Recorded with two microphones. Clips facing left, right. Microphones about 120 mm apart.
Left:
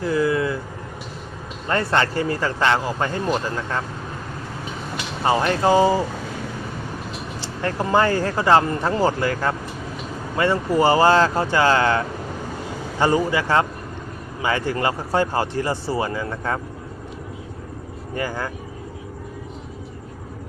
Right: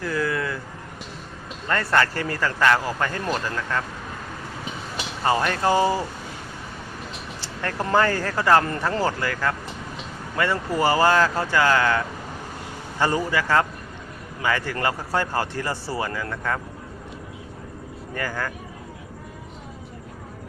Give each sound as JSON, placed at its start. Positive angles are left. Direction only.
{"t": 0.0, "sound": "a sound", "side_deg": 20}
{"t": 1.6, "sound": "speech", "side_deg": 25}
{"t": 5.2, "sound": "speech", "side_deg": 20}
{"t": 7.4, "sound": "vehicle", "side_deg": 20}
{"t": 7.9, "sound": "speech", "side_deg": 20}
{"t": 18.1, "sound": "speech", "side_deg": 20}